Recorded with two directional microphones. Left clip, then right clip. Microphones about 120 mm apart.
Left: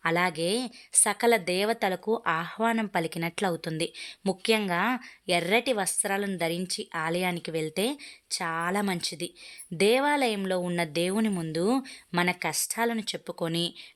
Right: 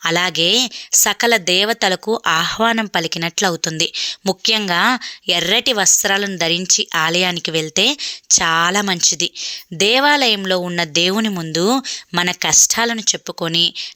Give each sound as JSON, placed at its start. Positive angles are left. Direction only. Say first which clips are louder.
{"t": 0.0, "sound": "a woman's voice", "louder": "right 10 dB", "side_deg": -30}